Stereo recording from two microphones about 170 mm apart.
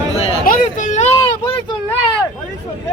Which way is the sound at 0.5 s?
60° left (ahead or behind).